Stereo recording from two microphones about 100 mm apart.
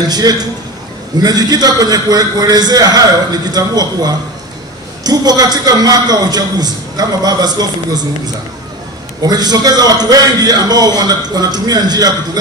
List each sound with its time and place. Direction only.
0.1 s a man's voice: 40° right (ahead or behind)
9.2 s a man's voice: 40° right (ahead or behind)